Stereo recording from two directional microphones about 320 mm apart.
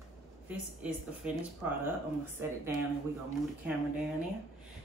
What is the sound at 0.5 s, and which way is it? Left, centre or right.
Speech, centre.